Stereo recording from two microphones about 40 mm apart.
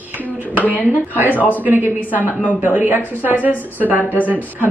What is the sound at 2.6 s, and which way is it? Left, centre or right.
Speech, right.